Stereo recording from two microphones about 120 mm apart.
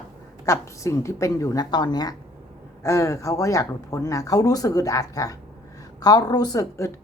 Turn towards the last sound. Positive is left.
turn(degrees=30)  # may be behind; listen again after turning